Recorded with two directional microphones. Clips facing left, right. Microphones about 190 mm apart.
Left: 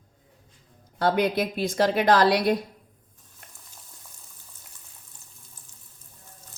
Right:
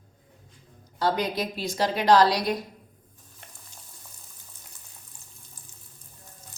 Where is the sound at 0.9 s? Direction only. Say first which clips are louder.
Left 3 dB; 55° left (ahead or behind).